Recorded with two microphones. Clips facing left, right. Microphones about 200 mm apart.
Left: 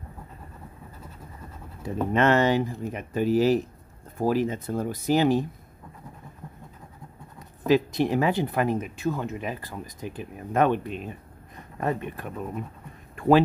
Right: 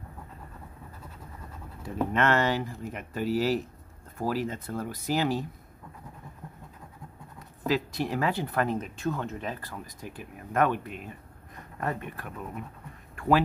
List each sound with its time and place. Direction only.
1.8 s speech: 20° left (ahead or behind)
7.3 s speech: 20° left (ahead or behind)
13.1 s a sound: 25° left (ahead or behind)